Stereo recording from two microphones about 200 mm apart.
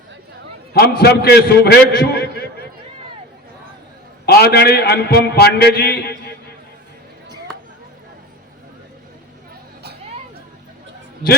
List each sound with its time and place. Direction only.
0.7 s a man's voice: 50° left (ahead or behind)
4.3 s a man's voice: 50° left (ahead or behind)